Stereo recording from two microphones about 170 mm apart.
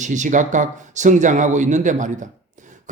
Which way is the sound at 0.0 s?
45° right (ahead or behind).